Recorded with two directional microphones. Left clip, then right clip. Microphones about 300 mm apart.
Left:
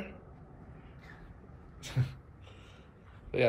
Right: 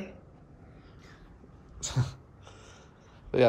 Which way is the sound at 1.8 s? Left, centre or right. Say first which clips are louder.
Right 5 dB; centre.